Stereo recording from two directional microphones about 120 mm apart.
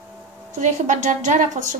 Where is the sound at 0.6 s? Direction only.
90° right.